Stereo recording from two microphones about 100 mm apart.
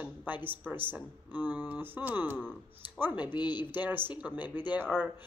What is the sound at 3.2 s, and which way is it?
Speech, 50° left (ahead or behind).